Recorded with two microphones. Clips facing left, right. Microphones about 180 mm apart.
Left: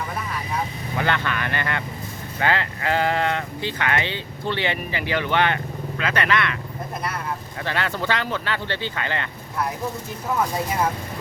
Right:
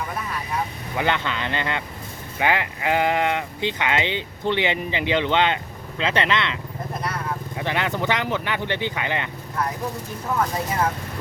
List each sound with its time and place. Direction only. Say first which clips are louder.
0.9 s speech: even; 15° right (ahead or behind)
7.6 s speech: right 2 dB; 20° right (ahead or behind)